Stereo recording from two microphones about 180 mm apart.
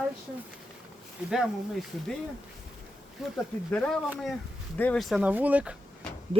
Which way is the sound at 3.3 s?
5° left (ahead or behind).